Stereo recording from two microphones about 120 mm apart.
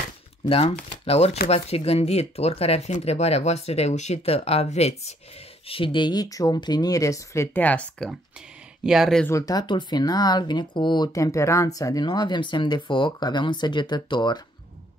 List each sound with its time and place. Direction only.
0.5 s speech: 55° left (ahead or behind)
5.7 s speech: 45° left (ahead or behind); by 7.4 s 25° left (ahead or behind)
7.5 s speech: 10° left (ahead or behind)
8.8 s speech: 5° right (ahead or behind)
9.3 s speech: 30° left (ahead or behind)